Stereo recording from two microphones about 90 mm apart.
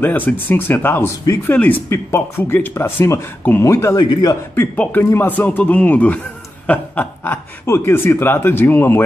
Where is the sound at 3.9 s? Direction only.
55° left (ahead or behind).